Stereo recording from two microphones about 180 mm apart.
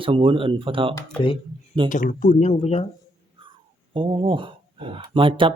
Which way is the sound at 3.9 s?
30° right (ahead or behind).